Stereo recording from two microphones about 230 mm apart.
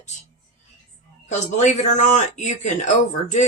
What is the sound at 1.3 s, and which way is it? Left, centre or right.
Speech, left.